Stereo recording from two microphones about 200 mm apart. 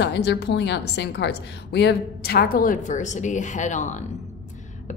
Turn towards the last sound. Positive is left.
turn(degrees=35)  # may be behind; listen again after turning